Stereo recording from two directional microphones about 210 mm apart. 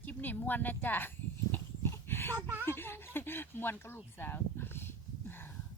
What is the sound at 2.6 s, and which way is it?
Speech, 10° left (ahead or behind).